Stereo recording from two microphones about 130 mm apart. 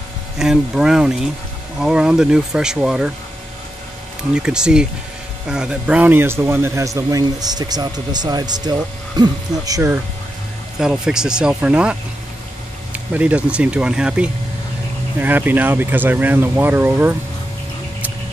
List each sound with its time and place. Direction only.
0.4 s speech: 5° right (ahead or behind)
4.4 s speech: 5° right (ahead or behind); by 9.9 s 25° right (ahead or behind)
10.8 s speech: 5° right (ahead or behind)